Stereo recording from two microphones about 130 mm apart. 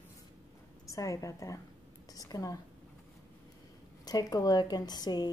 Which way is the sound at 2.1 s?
30° left (ahead or behind).